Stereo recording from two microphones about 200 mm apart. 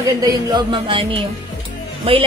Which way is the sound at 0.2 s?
20° right (ahead or behind).